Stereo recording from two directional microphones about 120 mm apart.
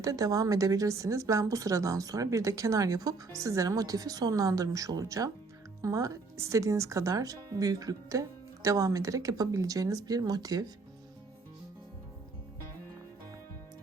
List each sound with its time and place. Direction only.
0.0 s a woman's voice: 30° right (ahead or behind)